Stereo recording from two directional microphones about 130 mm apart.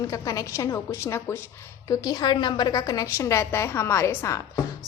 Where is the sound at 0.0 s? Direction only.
25° left (ahead or behind).